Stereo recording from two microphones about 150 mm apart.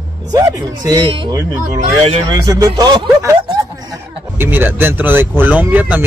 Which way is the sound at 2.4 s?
25° right (ahead or behind).